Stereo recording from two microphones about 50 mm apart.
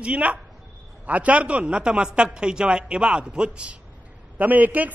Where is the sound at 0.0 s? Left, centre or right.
Right.